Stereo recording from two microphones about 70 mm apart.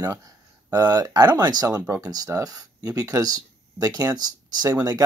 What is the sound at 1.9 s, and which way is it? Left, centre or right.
Speech, right.